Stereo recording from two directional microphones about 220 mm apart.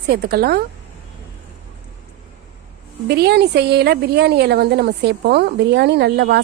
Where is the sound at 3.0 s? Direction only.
50° right (ahead or behind).